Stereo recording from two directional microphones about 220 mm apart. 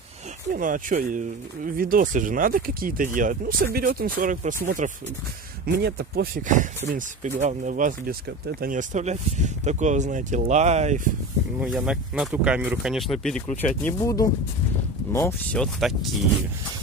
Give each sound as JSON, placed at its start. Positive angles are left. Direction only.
{"t": 0.5, "sound": "speech", "side_deg": -40}
{"t": 11.6, "sound": "speech", "side_deg": 0}